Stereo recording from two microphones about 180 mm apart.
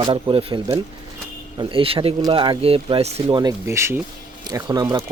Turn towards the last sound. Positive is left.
turn(degrees=-20)  # may be behind; listen again after turning